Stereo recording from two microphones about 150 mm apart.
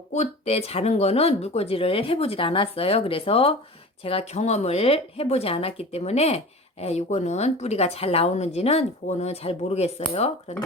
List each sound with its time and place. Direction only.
0.1 s speech: 45° left (ahead or behind)